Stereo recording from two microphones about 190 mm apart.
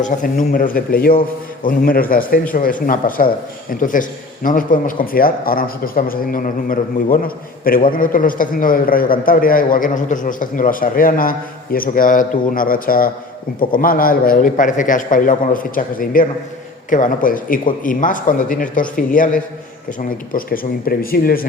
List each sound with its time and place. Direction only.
0.0 s a man's voice: 45° left (ahead or behind)